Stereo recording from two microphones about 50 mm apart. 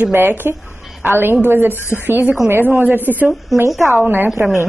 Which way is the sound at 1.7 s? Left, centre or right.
Left.